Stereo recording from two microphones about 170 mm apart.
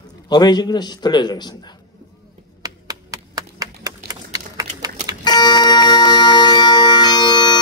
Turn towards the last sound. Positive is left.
turn(degrees=25)  # may be behind; listen again after turning